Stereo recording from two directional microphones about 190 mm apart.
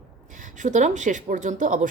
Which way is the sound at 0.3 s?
40° right (ahead or behind).